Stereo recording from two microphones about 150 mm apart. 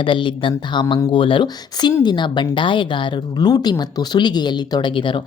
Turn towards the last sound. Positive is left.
turn(degrees=35)  # may be behind; listen again after turning